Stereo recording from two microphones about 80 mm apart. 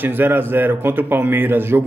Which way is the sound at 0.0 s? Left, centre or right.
Right.